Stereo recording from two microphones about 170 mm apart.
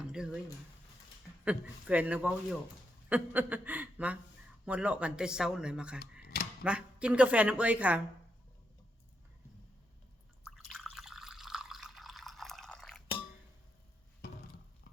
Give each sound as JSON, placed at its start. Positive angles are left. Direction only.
{"t": 0.2, "sound": "speech", "side_deg": -5}
{"t": 1.5, "sound": "a woman's voice", "side_deg": -10}
{"t": 6.0, "sound": "a sound", "side_deg": 65}
{"t": 6.6, "sound": "a woman's voice", "side_deg": -5}
{"t": 10.4, "sound": "drip", "side_deg": 0}